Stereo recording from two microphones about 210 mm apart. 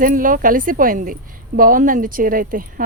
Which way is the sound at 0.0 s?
40° right (ahead or behind).